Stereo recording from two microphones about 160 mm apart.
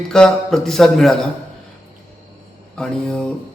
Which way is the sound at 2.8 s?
5° left (ahead or behind).